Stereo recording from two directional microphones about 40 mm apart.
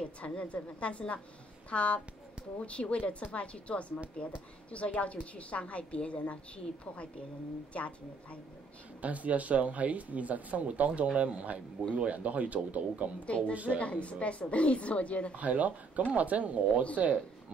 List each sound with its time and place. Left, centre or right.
0.2 s a woman's voice: left
9.0 s speech: right
13.7 s a woman's voice: left
15.3 s speech: right